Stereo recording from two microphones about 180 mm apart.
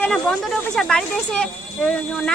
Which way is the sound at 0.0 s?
5° left (ahead or behind).